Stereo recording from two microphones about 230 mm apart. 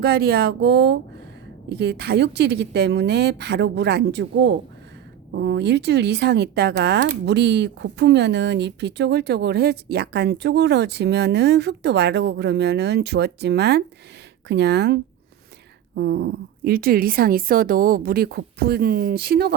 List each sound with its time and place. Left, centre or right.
0.0 s a woman's voice: right